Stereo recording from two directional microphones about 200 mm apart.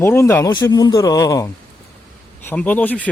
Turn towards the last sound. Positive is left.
turn(degrees=10)  # may be behind; listen again after turning